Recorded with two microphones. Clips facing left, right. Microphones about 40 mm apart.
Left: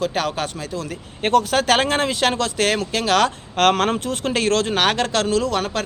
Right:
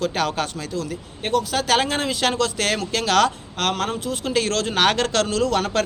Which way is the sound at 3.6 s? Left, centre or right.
Left.